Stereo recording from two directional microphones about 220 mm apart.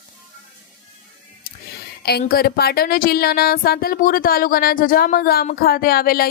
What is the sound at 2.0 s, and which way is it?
A woman's voice, 45° left (ahead or behind).